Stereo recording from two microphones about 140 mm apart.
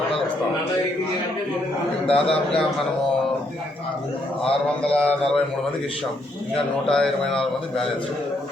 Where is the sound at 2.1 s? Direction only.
40° left (ahead or behind).